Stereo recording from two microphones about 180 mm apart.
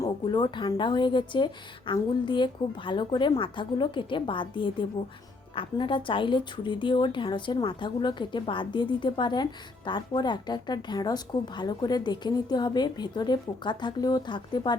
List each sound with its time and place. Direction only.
0.0 s a woman's voice: 25° left (ahead or behind)